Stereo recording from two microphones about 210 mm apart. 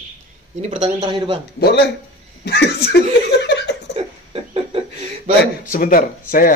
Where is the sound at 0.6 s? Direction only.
30° right (ahead or behind).